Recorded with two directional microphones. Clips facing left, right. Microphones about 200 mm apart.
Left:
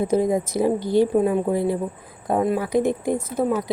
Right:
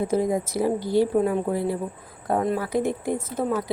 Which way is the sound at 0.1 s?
20° left (ahead or behind).